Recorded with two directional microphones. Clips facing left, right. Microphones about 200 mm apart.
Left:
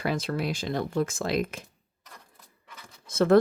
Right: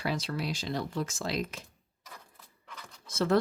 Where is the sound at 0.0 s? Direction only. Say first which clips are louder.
Left 4 dB; 50° left (ahead or behind).